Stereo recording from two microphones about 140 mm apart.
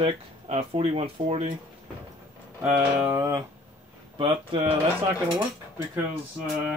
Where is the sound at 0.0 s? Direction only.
45° right (ahead or behind).